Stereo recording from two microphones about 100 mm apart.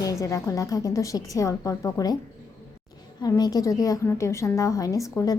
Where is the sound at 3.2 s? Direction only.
40° left (ahead or behind).